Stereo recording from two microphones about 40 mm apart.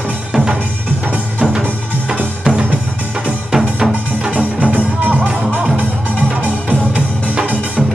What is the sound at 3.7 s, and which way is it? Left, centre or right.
Music, centre.